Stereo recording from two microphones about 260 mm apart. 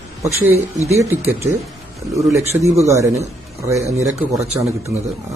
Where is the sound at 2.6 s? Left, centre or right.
Centre.